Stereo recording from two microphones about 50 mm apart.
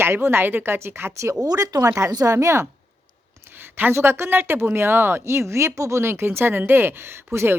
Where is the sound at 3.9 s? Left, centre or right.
Right.